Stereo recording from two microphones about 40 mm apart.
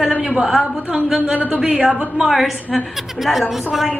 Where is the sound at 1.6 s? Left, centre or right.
Right.